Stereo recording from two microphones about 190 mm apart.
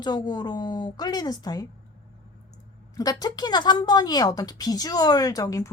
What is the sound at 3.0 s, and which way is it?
A woman's voice, 20° left (ahead or behind).